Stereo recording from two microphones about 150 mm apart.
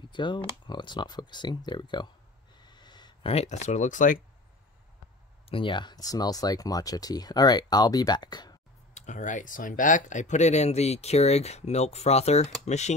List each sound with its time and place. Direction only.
0.1 s speech: 30° left (ahead or behind)
2.6 s a sound: 30° left (ahead or behind); by 4.2 s 60° left (ahead or behind)
5.5 s speech: 35° left (ahead or behind)
8.9 s speech: 55° left (ahead or behind)